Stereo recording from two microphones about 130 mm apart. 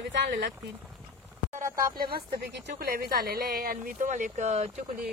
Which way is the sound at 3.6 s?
80° right.